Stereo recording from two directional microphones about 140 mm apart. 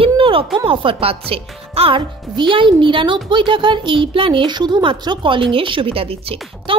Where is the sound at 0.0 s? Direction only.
40° right (ahead or behind).